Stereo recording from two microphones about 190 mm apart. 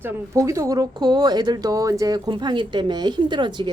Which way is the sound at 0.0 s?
15° right (ahead or behind).